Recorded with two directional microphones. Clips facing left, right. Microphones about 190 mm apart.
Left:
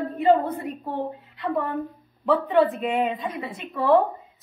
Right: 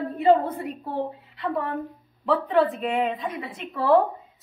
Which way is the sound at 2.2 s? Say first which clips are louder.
Left 2 dB; centre (ahead or behind).